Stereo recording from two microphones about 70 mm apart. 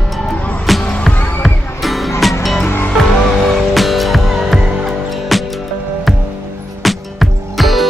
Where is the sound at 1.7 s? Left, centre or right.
Centre.